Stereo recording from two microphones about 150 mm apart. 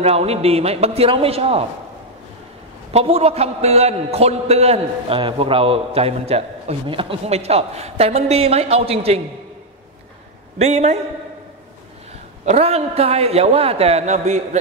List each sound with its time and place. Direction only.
0.0 s a man's voice: 45° right (ahead or behind)
2.9 s a man's voice: 45° right (ahead or behind)
10.6 s a man's voice: 50° right (ahead or behind)
12.4 s a man's voice: 45° right (ahead or behind)